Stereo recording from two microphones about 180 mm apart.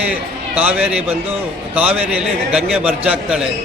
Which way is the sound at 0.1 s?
10° right (ahead or behind).